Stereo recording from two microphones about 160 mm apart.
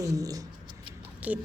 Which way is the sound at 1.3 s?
10° right (ahead or behind).